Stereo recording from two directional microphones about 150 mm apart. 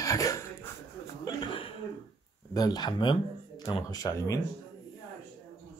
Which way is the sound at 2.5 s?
25° left (ahead or behind).